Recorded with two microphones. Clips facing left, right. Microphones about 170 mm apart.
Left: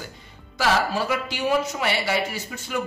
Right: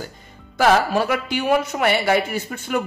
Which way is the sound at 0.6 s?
55° right (ahead or behind).